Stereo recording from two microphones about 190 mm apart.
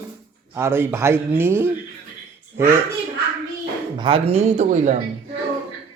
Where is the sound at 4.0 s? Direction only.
30° right (ahead or behind).